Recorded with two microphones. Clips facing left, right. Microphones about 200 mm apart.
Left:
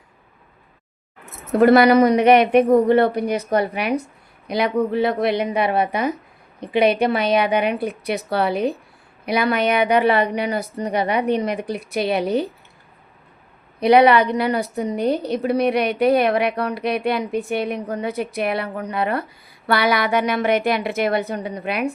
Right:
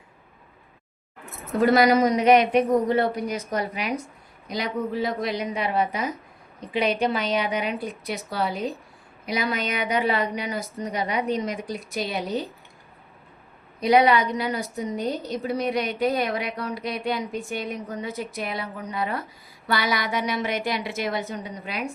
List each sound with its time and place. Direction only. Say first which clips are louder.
1.5 s a woman's voice: left 6 dB; 60° left (ahead or behind)
13.7 s a woman's voice: left 5 dB; 65° left (ahead or behind)